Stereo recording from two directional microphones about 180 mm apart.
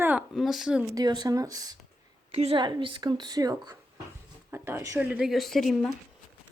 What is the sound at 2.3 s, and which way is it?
A woman's voice, 35° right (ahead or behind).